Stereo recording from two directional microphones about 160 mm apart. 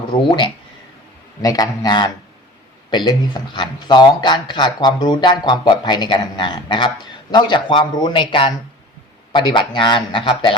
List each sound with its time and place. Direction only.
0.1 s speech: 30° left (ahead or behind)